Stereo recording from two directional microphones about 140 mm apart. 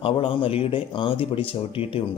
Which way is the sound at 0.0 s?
40° left (ahead or behind).